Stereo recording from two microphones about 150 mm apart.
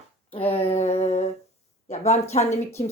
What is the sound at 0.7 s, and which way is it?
A woman's voice, 45° left (ahead or behind).